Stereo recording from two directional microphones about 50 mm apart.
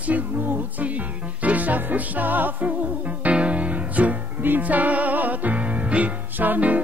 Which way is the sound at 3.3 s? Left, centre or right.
Right.